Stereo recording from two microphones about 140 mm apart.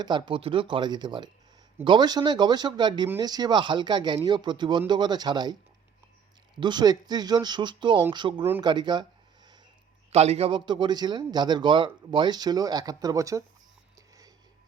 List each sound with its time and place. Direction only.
0.0 s speech: 30° right (ahead or behind)
6.6 s speech: 30° right (ahead or behind)
10.1 s speech: 50° right (ahead or behind); by 13.4 s 25° right (ahead or behind)